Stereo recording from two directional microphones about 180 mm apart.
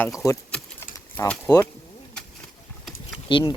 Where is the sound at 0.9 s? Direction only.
20° left (ahead or behind).